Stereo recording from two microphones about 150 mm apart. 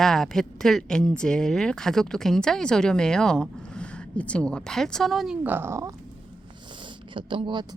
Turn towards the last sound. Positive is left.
turn(degrees=-30)  # may be behind; listen again after turning